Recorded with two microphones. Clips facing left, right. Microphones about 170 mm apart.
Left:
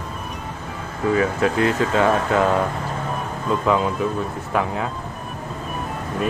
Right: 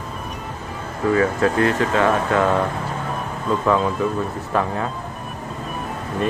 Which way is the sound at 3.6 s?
10° left (ahead or behind).